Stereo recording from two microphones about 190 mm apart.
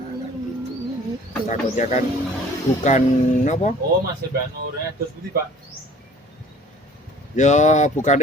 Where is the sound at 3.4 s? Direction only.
40° left (ahead or behind).